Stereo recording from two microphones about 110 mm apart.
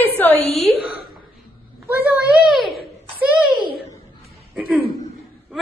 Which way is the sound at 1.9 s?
15° right (ahead or behind).